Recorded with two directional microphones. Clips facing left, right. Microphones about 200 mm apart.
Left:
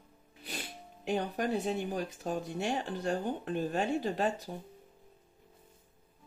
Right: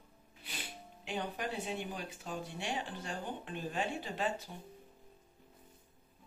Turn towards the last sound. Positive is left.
turn(degrees=40)  # may be behind; listen again after turning